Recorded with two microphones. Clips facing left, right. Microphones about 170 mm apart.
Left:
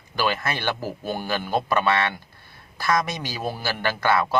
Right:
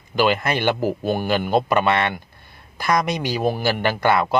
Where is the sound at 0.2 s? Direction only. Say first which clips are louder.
Right 6 dB; 20° right (ahead or behind).